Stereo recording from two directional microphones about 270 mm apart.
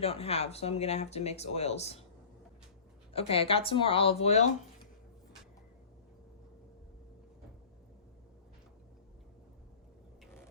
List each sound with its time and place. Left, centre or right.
0.0 s speech: left
3.1 s speech: left